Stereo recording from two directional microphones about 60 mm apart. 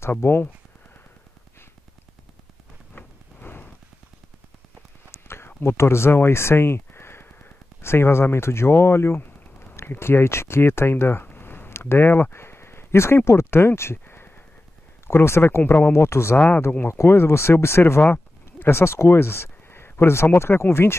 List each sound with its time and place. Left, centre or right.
0.0 s speech: left
2.9 s rain: left
3.4 s a sound: left
5.1 s speech: left
11.2 s a sound: left
15.0 s speech: left
16.3 s speech: left
16.8 s speech: left
18.0 s speech: left